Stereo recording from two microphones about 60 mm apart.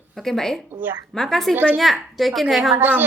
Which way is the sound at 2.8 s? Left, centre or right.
Right.